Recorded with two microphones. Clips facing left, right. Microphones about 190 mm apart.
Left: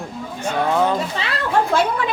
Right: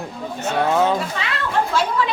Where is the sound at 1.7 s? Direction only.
55° left (ahead or behind).